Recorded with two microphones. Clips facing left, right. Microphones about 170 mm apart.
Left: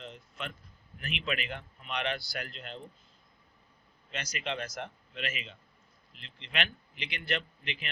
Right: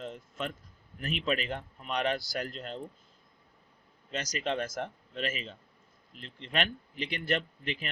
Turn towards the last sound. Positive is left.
turn(degrees=-40)  # may be behind; listen again after turning